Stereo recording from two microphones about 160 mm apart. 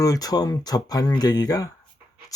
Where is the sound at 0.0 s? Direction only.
20° left (ahead or behind).